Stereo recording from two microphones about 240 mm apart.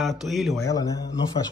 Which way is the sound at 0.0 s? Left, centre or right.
Centre.